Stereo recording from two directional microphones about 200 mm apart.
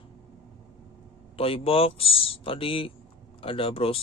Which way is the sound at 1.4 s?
30° left (ahead or behind).